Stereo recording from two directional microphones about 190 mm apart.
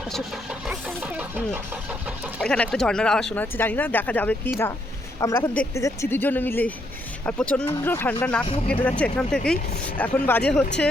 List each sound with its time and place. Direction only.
0.6 s speech: 5° right (ahead or behind)
2.5 s speech: 5° left (ahead or behind)